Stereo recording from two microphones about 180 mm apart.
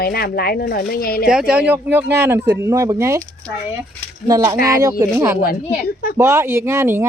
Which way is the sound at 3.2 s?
5° left (ahead or behind).